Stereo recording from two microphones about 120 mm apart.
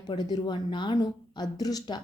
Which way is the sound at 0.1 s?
35° left (ahead or behind).